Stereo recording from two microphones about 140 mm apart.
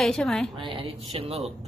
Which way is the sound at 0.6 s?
40° right (ahead or behind).